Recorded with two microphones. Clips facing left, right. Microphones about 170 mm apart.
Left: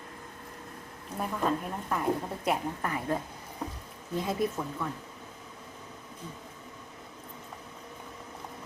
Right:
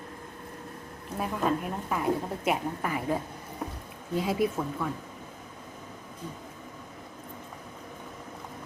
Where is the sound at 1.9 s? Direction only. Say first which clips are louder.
Right 1 dB; 5° right (ahead or behind).